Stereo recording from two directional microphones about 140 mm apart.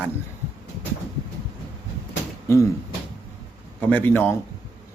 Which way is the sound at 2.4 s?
20° left (ahead or behind).